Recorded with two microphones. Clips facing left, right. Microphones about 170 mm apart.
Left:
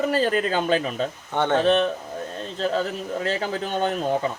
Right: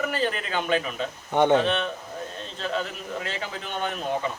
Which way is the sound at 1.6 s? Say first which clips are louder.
Left 7 dB; 40° left (ahead or behind).